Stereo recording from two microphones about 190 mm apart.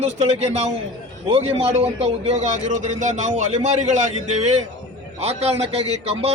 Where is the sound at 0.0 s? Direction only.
35° right (ahead or behind).